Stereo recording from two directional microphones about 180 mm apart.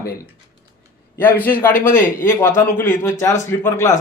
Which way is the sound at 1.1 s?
10° left (ahead or behind).